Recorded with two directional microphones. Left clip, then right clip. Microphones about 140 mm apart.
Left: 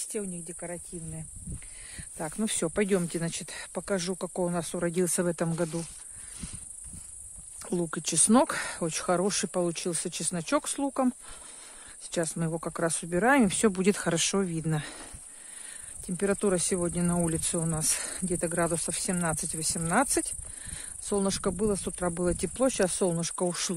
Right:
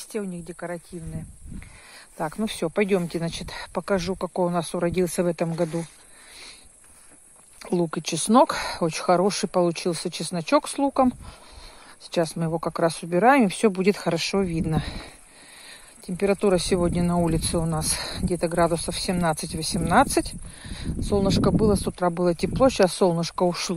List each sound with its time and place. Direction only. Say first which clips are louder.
0.1 s speech: right 7 dB; 25° left (ahead or behind)
2.1 s speech: right 7 dB; 30° left (ahead or behind)
2.4 s speech: right 4 dB; 50° left (ahead or behind)
3.3 s speech: right 6 dB; 25° left (ahead or behind)
7.6 s speech: right 6 dB; 25° left (ahead or behind)
13.5 s speech: right 5 dB; 40° left (ahead or behind)
16.2 s speech: right 6 dB; 30° left (ahead or behind)
21.0 s speech: right 7 dB; 35° left (ahead or behind)